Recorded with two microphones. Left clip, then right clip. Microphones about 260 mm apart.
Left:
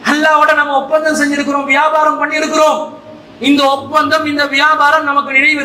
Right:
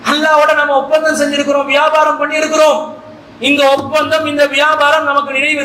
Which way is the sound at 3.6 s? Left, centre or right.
Left.